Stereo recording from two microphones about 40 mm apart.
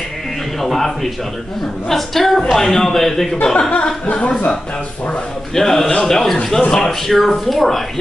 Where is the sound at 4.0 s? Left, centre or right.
Left.